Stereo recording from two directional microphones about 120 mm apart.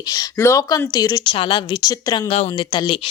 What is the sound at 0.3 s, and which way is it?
Speech, 25° left (ahead or behind).